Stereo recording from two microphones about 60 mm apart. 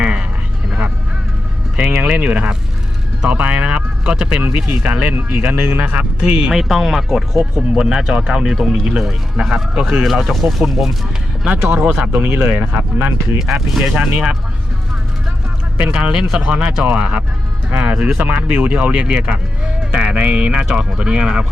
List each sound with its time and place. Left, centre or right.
0.0 s a sound: centre
1.7 s speech: centre
6.3 s speech: centre
6.6 s speech: centre
7.7 s speech: centre
11.4 s speech: right
13.9 s speech: right
15.8 s speech: centre